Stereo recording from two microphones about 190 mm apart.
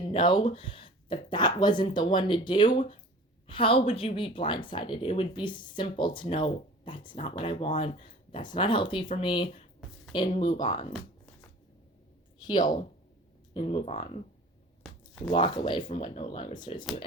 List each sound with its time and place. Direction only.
0.0 s speech: 25° left (ahead or behind)
12.4 s speech: 20° left (ahead or behind)
15.3 s speech: 25° left (ahead or behind)